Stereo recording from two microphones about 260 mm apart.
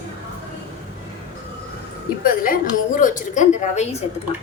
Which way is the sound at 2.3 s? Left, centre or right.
Left.